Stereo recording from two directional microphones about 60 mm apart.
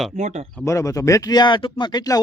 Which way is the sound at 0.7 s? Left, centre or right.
Left.